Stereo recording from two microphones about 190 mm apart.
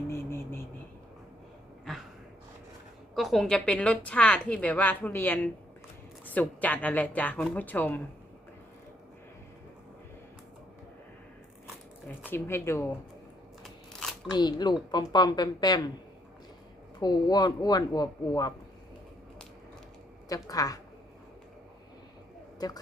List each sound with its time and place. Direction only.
0.1 s a sound: 15° left (ahead or behind)
1.8 s a sound: centre (ahead or behind)
3.2 s a woman's voice: centre (ahead or behind)
12.3 s a woman's voice: 15° left (ahead or behind)
13.6 s scissors: centre (ahead or behind)
14.3 s speech: 20° left (ahead or behind)
17.0 s speech: 20° left (ahead or behind)
20.2 s speech: 20° left (ahead or behind)